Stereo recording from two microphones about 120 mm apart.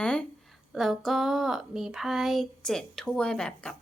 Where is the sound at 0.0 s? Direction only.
5° left (ahead or behind).